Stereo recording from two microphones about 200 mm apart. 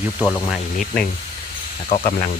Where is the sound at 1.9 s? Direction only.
40° left (ahead or behind).